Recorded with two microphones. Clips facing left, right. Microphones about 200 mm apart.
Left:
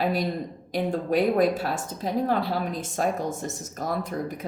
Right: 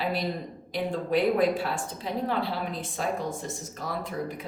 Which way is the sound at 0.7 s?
45° left (ahead or behind).